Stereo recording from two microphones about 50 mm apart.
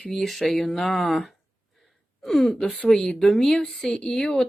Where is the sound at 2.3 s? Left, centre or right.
Centre.